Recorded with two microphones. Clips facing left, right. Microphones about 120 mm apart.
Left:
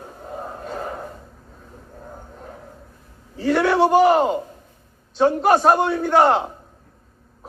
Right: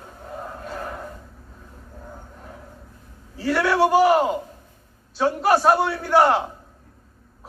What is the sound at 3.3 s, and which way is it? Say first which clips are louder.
A man's voice: left 3 dB; 15° left (ahead or behind).